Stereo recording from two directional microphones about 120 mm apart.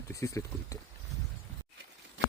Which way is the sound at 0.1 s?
25° left (ahead or behind).